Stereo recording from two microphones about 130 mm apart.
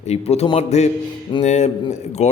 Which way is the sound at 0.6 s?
60° left (ahead or behind).